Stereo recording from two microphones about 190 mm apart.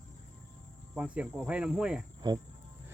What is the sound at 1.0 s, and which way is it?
Cricket, 5° right (ahead or behind).